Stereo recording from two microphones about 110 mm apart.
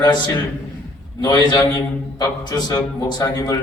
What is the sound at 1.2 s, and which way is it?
A man's voice, 40° left (ahead or behind).